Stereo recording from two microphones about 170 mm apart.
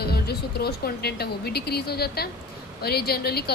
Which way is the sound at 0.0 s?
70° left (ahead or behind).